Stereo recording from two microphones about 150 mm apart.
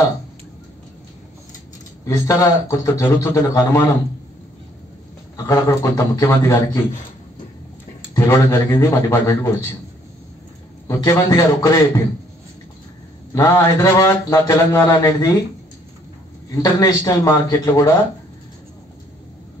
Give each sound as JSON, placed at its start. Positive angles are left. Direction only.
{"t": 2.0, "sound": "mantra", "side_deg": 20}
{"t": 5.5, "sound": "mantra", "side_deg": 20}
{"t": 8.1, "sound": "mantra", "side_deg": 20}
{"t": 10.9, "sound": "mantra", "side_deg": 20}
{"t": 13.3, "sound": "mantra", "side_deg": 20}
{"t": 16.6, "sound": "mantra", "side_deg": 25}